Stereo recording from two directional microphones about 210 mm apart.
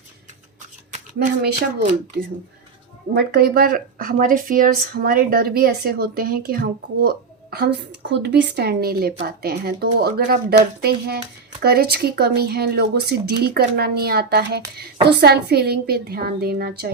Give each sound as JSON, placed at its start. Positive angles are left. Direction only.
{"t": 1.4, "sound": "speech", "side_deg": -40}
{"t": 3.2, "sound": "speech", "side_deg": -45}